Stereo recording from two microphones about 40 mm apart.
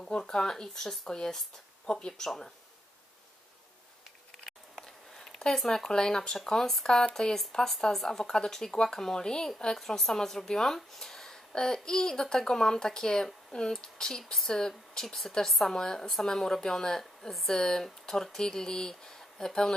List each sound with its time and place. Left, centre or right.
0.0 s speech: centre
5.1 s a sound: centre
5.5 s speech: centre
9.8 s speech: centre